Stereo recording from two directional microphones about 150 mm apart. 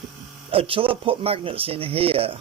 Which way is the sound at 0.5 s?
40° right (ahead or behind).